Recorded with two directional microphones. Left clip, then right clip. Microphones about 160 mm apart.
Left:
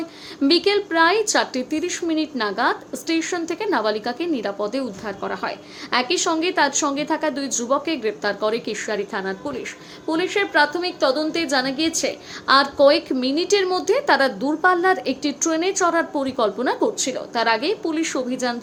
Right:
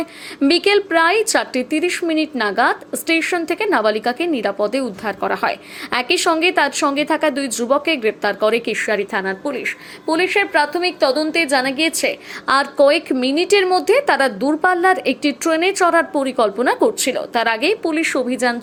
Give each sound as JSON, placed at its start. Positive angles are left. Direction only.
{"t": 0.4, "sound": "speech", "side_deg": -20}